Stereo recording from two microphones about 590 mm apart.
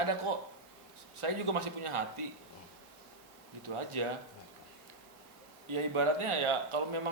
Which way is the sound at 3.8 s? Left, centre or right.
Right.